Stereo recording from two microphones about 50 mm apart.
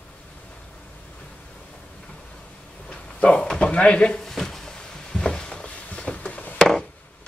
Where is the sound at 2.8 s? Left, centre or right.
Left.